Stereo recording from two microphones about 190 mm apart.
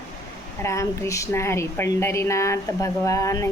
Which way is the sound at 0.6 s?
15° left (ahead or behind).